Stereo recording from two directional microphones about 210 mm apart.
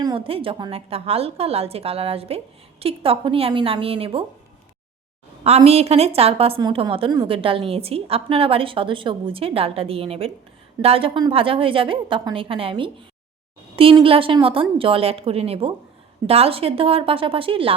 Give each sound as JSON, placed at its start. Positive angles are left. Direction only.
{"t": 0.0, "sound": "a woman's voice", "side_deg": -25}
{"t": 5.4, "sound": "a woman's voice", "side_deg": -30}